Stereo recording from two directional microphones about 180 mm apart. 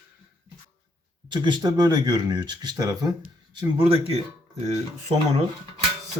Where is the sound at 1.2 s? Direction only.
25° right (ahead or behind).